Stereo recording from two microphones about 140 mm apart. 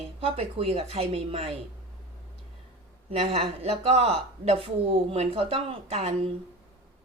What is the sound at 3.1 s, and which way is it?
Speech, 45° right (ahead or behind).